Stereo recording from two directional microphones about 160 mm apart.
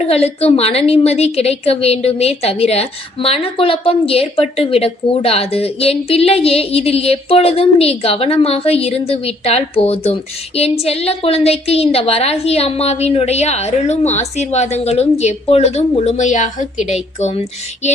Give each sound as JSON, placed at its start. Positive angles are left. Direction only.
{"t": 0.0, "sound": "a woman's voice", "side_deg": 40}